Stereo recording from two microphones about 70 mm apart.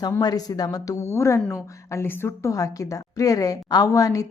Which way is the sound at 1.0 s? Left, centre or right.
Left.